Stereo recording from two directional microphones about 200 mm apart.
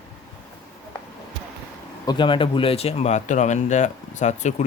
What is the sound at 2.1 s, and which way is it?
Speech, 25° left (ahead or behind).